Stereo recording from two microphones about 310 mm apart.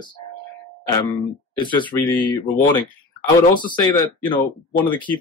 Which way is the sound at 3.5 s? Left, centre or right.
Centre.